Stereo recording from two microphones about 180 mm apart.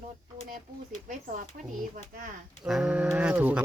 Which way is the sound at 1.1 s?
50° right (ahead or behind).